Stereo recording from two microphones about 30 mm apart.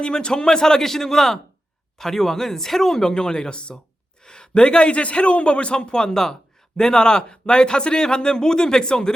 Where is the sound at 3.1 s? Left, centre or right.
Left.